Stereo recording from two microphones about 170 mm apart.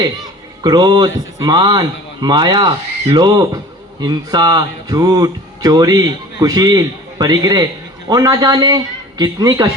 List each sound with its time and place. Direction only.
0.6 s a man's voice: 25° right (ahead or behind)